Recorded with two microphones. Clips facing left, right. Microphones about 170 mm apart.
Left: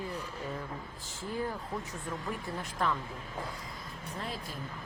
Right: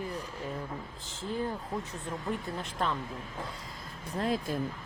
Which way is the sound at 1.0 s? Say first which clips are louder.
Right 2 dB; 20° right (ahead or behind).